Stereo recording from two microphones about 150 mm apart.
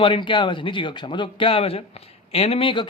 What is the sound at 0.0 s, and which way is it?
A man's voice, 35° left (ahead or behind).